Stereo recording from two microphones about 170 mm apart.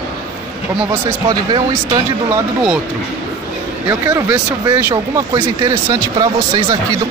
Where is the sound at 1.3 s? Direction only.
25° right (ahead or behind).